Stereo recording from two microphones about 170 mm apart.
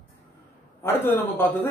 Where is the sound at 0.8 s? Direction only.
10° left (ahead or behind).